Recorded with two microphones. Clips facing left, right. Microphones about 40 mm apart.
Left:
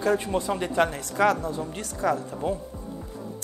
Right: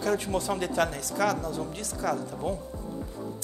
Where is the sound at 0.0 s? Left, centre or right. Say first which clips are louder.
Left 3 dB; left.